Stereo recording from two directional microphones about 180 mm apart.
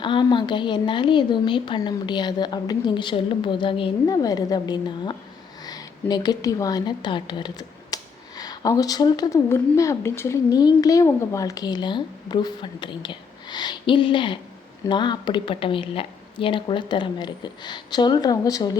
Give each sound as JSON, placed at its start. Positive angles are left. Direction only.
{"t": 0.0, "sound": "a woman's voice", "side_deg": 25}